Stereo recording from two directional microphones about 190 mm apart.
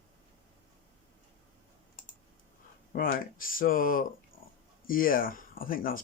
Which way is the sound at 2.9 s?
50° left (ahead or behind).